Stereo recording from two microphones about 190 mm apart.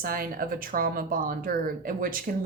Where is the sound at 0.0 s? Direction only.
50° right (ahead or behind).